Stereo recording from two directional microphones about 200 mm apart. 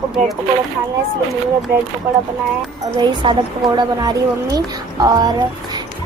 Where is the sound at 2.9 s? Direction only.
20° right (ahead or behind).